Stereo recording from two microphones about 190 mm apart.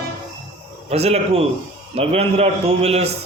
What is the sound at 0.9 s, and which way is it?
A man's voice, 35° right (ahead or behind).